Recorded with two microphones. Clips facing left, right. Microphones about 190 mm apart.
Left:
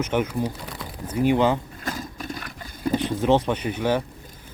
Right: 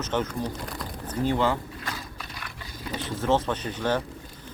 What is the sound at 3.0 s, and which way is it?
Speech, 15° left (ahead or behind).